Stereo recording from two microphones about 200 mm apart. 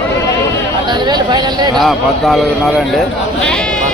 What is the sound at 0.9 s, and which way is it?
Speech, 20° right (ahead or behind).